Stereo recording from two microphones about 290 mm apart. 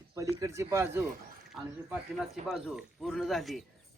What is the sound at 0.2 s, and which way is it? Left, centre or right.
Speech, centre.